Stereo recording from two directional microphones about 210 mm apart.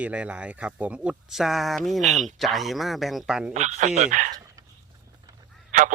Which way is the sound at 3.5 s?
35° right (ahead or behind).